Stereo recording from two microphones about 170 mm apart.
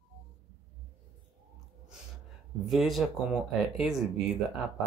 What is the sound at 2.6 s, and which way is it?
Speech, centre (ahead or behind).